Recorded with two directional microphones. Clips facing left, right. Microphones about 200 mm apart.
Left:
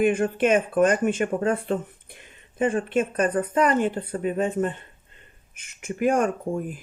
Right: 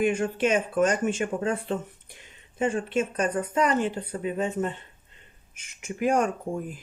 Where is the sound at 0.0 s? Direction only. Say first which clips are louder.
Left 3 dB; 55° left (ahead or behind).